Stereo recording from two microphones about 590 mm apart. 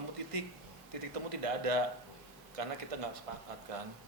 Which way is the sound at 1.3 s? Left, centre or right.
Right.